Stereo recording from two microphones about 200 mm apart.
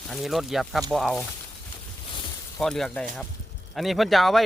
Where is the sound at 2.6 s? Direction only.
Centre (ahead or behind).